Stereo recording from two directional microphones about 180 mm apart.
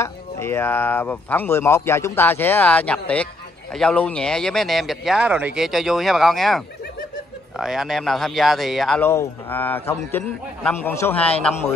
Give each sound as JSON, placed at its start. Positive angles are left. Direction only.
{"t": 0.0, "sound": "speech", "side_deg": 15}